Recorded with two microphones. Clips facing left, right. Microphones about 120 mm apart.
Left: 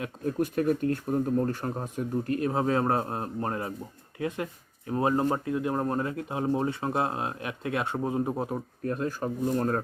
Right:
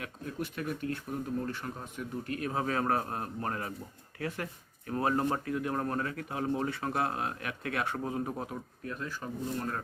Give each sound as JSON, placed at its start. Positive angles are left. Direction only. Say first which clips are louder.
{"t": 0.3, "sound": "speech", "louder": "left 11 dB", "side_deg": 40}
{"t": 8.8, "sound": "speech", "louder": "left 10 dB", "side_deg": 40}